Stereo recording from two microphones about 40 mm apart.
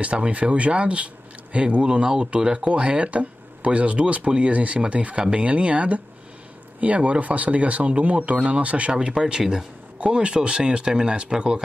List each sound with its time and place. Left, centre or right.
0.0 s speech: right
8.9 s speech: right